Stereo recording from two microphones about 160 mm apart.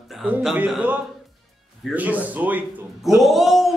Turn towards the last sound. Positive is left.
turn(degrees=0)  # may be behind; listen again after turning